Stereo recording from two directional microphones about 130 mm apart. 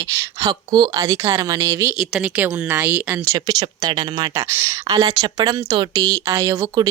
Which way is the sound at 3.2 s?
30° right (ahead or behind).